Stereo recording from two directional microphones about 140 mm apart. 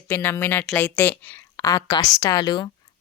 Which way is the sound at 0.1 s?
15° left (ahead or behind).